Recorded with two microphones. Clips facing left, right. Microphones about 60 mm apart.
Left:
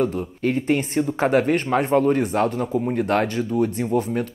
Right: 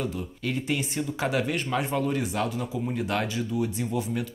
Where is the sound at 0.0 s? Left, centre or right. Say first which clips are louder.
Left 9 dB; left.